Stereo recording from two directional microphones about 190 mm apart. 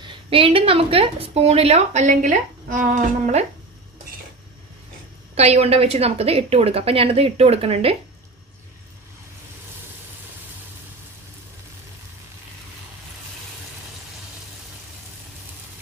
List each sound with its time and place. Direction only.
0.0 s speech: 30° right (ahead or behind)
5.3 s speech: 35° right (ahead or behind)